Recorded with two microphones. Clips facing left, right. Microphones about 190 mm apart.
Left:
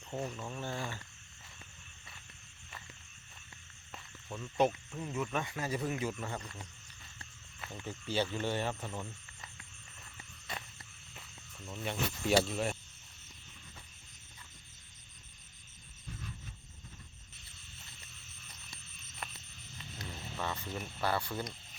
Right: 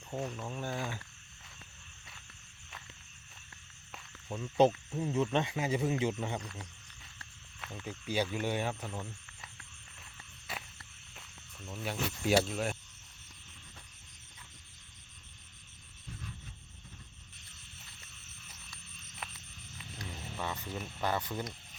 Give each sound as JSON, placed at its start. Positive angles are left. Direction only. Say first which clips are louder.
{"t": 0.1, "sound": "speech", "louder": "right 1 dB", "side_deg": -5}
{"t": 4.3, "sound": "speech", "louder": "right 4 dB", "side_deg": -25}
{"t": 6.4, "sound": "a sound", "louder": "right 2 dB", "side_deg": 0}
{"t": 7.9, "sound": "speech", "louder": "right 1 dB", "side_deg": -10}
{"t": 10.5, "sound": "frog", "louder": "even", "side_deg": -5}
{"t": 11.1, "sound": "speech", "louder": "left 1 dB", "side_deg": 0}
{"t": 19.2, "sound": "frog", "louder": "left 1 dB", "side_deg": -5}
{"t": 20.1, "sound": "a sound", "louder": "even", "side_deg": -10}